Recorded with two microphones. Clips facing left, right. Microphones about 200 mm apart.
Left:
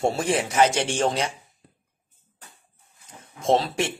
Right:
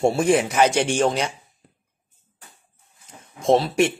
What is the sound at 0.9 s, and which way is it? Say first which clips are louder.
Speech: right 3 dB; 25° left (ahead or behind).